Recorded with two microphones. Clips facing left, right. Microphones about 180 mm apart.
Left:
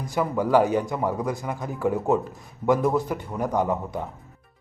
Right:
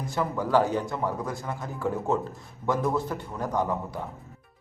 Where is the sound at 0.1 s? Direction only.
15° left (ahead or behind).